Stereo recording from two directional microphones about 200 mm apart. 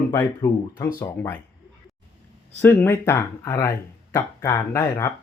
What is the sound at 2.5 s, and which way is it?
Speech, 10° left (ahead or behind).